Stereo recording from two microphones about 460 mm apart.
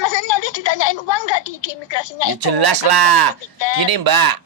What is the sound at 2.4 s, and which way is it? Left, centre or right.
Speech, right.